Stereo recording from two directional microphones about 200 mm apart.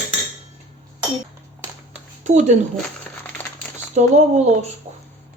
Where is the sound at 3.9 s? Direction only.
35° right (ahead or behind).